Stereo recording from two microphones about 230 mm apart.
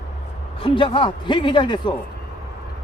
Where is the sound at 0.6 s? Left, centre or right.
Left.